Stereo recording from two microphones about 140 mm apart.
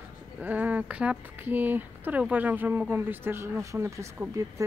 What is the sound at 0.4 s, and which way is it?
Speech, 10° right (ahead or behind).